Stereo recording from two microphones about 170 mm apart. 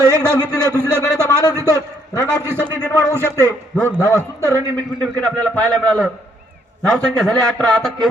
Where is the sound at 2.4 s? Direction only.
15° right (ahead or behind).